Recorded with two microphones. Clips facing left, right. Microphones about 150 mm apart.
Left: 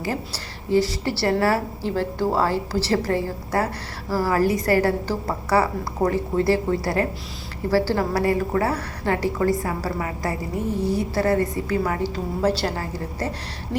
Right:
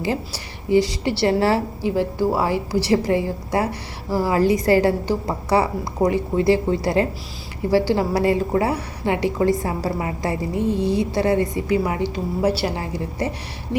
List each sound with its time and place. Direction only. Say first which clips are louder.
0.0 s a woman's voice: right 3 dB; 20° right (ahead or behind)
1.8 s a woman's voice: right 3 dB; 10° right (ahead or behind)